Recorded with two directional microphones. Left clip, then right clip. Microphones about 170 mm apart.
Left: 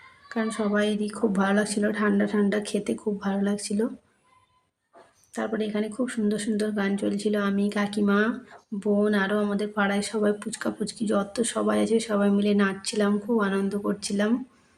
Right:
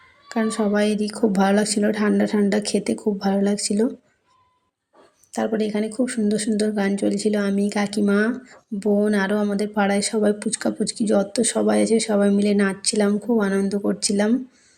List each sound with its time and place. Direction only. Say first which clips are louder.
0.3 s a woman's voice: right 5 dB; 20° right (ahead or behind)
5.3 s speech: right 6 dB; 20° right (ahead or behind)